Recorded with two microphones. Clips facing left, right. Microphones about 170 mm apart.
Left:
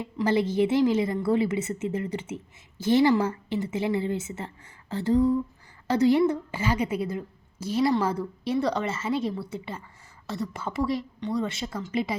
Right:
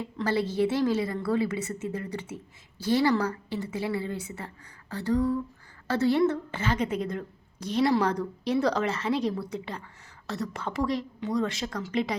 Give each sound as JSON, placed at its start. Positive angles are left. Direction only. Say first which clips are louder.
{"t": 0.2, "sound": "a woman's voice", "louder": "left 3 dB", "side_deg": 20}